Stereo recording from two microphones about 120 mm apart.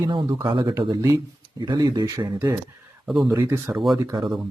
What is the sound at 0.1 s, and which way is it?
Speech, 40° right (ahead or behind).